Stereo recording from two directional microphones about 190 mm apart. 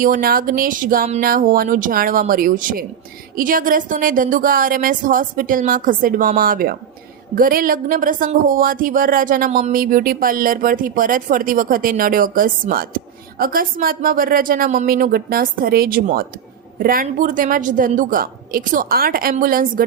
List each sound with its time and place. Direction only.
0.0 s speech: 45° right (ahead or behind)